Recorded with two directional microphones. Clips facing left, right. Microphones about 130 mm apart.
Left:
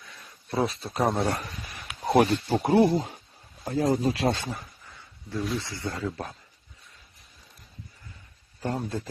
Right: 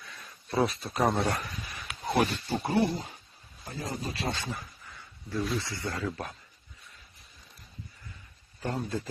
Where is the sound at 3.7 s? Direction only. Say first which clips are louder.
Left 12 dB; 85° left.